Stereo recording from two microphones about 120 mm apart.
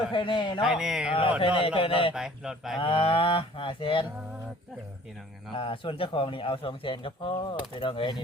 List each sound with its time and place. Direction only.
0.1 s speech: 45° left (ahead or behind)
0.6 s speech: 5° right (ahead or behind)
1.6 s speech: 50° left (ahead or behind)
2.1 s speech: 5° right (ahead or behind)
2.7 s speech: 45° left (ahead or behind)
5.5 s speech: 45° left (ahead or behind)